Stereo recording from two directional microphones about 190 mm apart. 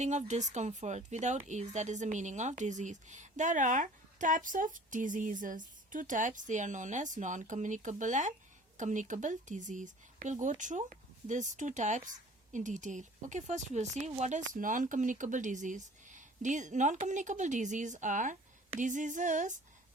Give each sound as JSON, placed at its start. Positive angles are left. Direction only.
{"t": 0.0, "sound": "speech", "side_deg": -40}